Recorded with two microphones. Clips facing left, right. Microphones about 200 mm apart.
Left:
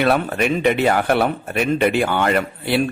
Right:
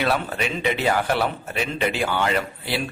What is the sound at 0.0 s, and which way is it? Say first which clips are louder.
Speech: left 6 dB; 55° left (ahead or behind).